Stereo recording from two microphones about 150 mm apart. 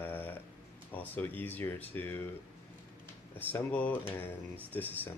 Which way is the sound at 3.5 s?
10° left (ahead or behind).